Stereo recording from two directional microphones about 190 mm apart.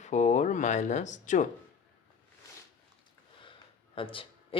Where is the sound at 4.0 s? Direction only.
30° left (ahead or behind).